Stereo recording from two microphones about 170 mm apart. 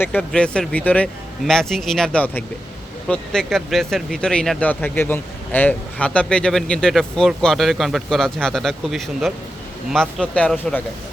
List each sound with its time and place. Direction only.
0.0 s speech: 10° left (ahead or behind)